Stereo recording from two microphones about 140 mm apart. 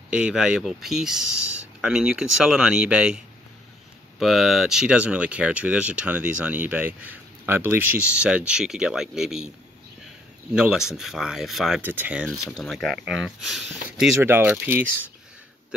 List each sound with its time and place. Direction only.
0.1 s speech: 5° right (ahead or behind)
4.2 s speech: centre (ahead or behind)
10.5 s speech: 5° right (ahead or behind)
11.8 s speech: 15° right (ahead or behind)
12.3 s speech: 5° left (ahead or behind)
14.2 s speech: 15° right (ahead or behind)